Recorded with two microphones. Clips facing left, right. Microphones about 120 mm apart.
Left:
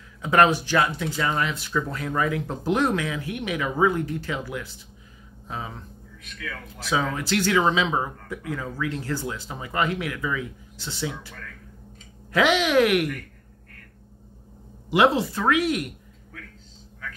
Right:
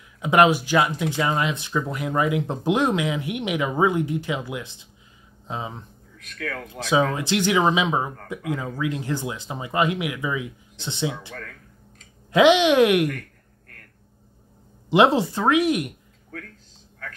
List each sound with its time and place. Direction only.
0.2 s speech: 15° right (ahead or behind)
6.3 s a man's voice: 60° right (ahead or behind)
6.7 s speech: 25° right (ahead or behind)
14.9 s speech: 25° right (ahead or behind)